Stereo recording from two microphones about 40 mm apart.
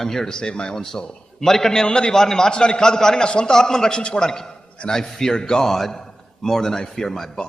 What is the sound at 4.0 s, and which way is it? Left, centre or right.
Speech, left.